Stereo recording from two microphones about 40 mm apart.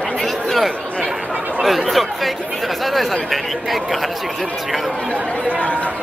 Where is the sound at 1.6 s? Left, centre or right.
Centre.